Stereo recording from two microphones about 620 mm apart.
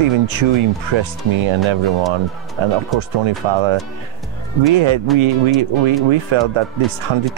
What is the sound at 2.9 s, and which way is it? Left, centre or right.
Speech, right.